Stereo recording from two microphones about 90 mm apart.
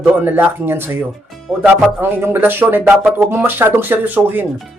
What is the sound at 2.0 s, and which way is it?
Speech, 25° right (ahead or behind).